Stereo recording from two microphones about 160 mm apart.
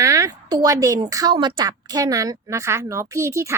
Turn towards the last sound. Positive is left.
turn(degrees=-20)  # may be behind; listen again after turning